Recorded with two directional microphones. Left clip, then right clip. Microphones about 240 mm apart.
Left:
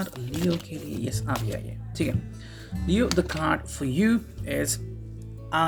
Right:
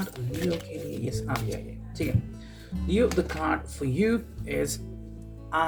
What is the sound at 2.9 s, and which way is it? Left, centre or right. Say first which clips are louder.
Speech: even; left.